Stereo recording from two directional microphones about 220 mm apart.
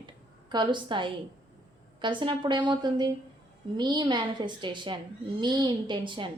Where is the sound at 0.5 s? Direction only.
20° right (ahead or behind).